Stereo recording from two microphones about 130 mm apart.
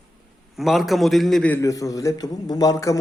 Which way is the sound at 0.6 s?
Centre (ahead or behind).